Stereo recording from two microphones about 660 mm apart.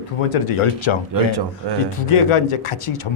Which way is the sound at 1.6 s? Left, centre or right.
Right.